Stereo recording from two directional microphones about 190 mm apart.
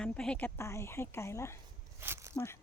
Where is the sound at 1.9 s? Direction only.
15° right (ahead or behind).